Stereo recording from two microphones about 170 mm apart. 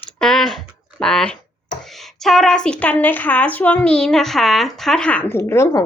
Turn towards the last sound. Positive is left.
turn(degrees=15)  # may be behind; listen again after turning